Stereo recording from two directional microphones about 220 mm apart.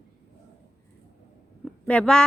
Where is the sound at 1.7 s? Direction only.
5° left (ahead or behind).